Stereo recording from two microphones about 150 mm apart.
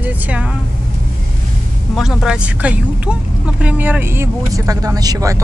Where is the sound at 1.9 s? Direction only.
5° right (ahead or behind).